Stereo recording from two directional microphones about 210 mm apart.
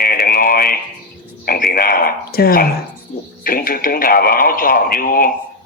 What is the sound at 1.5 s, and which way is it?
Speech, 45° left (ahead or behind).